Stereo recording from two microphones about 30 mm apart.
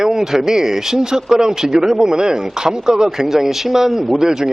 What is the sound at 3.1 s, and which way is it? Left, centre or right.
Speech, centre.